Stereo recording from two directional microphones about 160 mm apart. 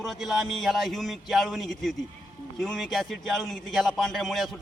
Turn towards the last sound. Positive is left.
turn(degrees=0)  # may be behind; listen again after turning